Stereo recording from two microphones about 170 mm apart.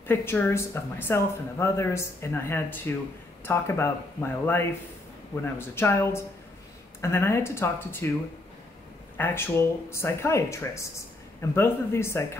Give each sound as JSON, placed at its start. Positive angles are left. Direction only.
{"t": 0.0, "sound": "a woman's voice", "side_deg": 15}
{"t": 9.1, "sound": "a woman's voice", "side_deg": 10}